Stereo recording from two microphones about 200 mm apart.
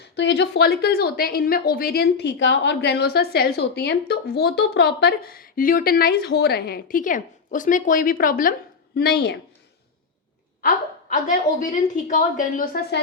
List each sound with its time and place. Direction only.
0.2 s a woman's voice: 60° left (ahead or behind); by 8.5 s 45° left (ahead or behind)
9.0 s a woman's voice: 55° left (ahead or behind)
10.6 s a woman's voice: 45° left (ahead or behind)